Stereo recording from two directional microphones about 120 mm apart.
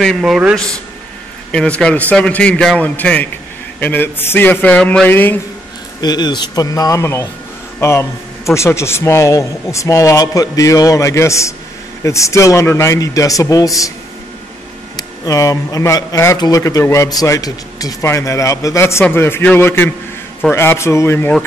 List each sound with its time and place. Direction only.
0.0 s a man's voice: centre (ahead or behind)
1.5 s a man's voice: 5° left (ahead or behind)
5.9 s speech: 35° left (ahead or behind)
15.0 s speech: 30° left (ahead or behind)